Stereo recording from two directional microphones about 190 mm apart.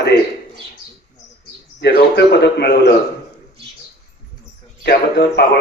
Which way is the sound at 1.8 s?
60° left (ahead or behind).